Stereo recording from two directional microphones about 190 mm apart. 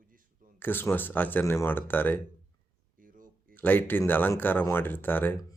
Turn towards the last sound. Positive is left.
turn(degrees=10)  # may be behind; listen again after turning